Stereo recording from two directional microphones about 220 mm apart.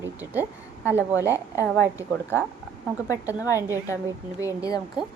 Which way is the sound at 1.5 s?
15° left (ahead or behind).